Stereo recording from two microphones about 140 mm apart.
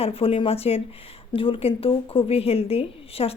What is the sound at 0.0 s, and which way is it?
Speech, 45° left (ahead or behind).